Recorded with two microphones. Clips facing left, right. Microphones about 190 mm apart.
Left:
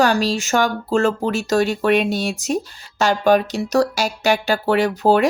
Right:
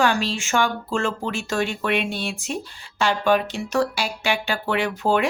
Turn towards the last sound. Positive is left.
turn(degrees=40)  # may be behind; listen again after turning